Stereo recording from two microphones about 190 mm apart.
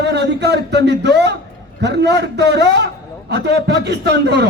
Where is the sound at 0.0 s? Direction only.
65° right (ahead or behind).